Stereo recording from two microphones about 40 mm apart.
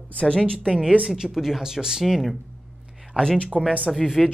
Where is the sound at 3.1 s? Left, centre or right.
Right.